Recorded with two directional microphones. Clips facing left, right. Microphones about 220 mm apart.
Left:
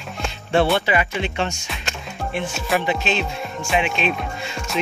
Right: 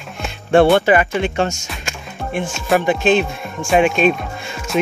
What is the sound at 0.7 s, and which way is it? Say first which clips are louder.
Speech: right 7 dB; 50° right (ahead or behind).